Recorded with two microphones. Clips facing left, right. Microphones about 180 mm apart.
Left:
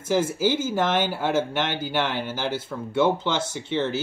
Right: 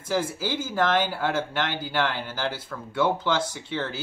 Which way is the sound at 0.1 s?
20° left (ahead or behind).